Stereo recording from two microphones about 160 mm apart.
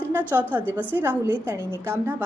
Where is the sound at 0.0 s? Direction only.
10° right (ahead or behind).